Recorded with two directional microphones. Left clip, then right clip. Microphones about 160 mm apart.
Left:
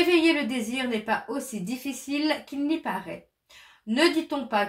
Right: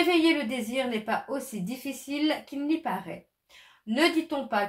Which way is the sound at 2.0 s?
30° right (ahead or behind).